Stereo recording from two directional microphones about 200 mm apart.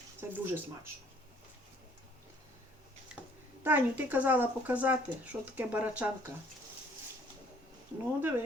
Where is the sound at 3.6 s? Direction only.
10° right (ahead or behind).